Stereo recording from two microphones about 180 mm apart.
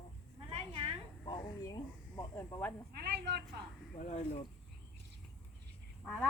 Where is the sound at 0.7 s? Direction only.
30° right (ahead or behind).